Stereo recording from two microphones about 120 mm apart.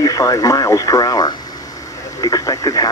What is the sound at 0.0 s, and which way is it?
Speech, 30° left (ahead or behind).